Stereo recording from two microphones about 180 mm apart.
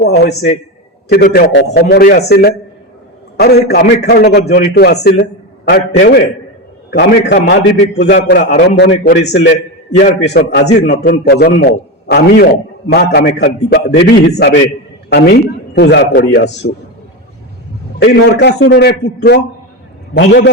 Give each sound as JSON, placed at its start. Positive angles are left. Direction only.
{"t": 0.0, "sound": "a man's voice", "side_deg": 65}
{"t": 8.9, "sound": "a man's voice", "side_deg": 40}
{"t": 10.0, "sound": "a man's voice", "side_deg": 65}
{"t": 18.0, "sound": "a man's voice", "side_deg": 70}